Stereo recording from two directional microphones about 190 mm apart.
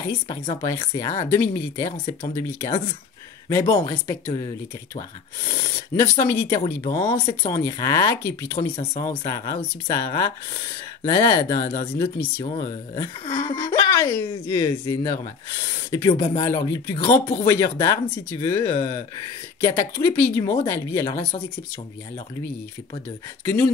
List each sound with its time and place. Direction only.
0.0 s speech: 20° left (ahead or behind)
5.5 s speech: 15° left (ahead or behind)
6.6 s speech: 30° left (ahead or behind)
12.4 s speech: 30° left (ahead or behind)
17.5 s speech: 15° left (ahead or behind)